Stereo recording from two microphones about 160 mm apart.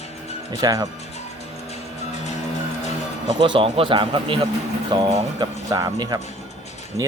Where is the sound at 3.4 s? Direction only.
30° right (ahead or behind).